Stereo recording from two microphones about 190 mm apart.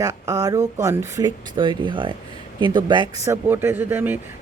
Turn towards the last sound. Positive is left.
turn(degrees=-10)  # may be behind; listen again after turning